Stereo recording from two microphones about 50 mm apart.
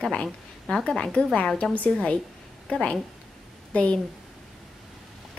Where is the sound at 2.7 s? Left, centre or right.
Left.